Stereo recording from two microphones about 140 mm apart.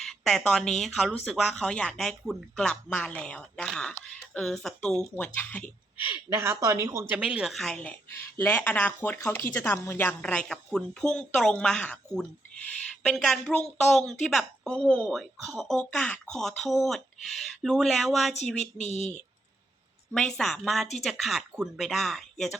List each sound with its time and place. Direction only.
0.0 s speech: 5° left (ahead or behind)
6.1 s a woman's voice: 20° right (ahead or behind); by 11.9 s 5° left (ahead or behind)
13.0 s speech: 5° left (ahead or behind)
18.6 s speech: 55° left (ahead or behind)
20.1 s speech: 5° left (ahead or behind)